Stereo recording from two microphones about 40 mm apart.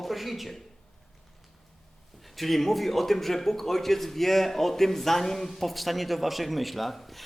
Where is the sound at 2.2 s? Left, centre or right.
Centre.